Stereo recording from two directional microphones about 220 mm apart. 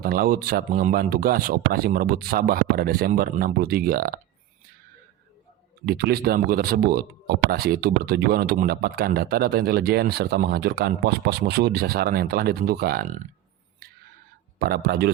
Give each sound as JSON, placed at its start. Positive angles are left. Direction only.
{"t": 0.0, "sound": "speech", "side_deg": -40}
{"t": 5.8, "sound": "speech", "side_deg": -45}
{"t": 14.6, "sound": "speech", "side_deg": -45}